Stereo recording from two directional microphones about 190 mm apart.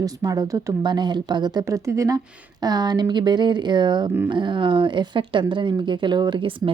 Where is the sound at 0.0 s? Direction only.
20° right (ahead or behind).